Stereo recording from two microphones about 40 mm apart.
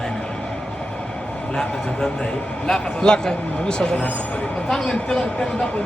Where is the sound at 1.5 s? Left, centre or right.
Centre.